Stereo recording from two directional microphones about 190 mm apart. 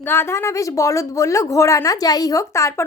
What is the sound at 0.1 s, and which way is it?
Speech, 15° left (ahead or behind).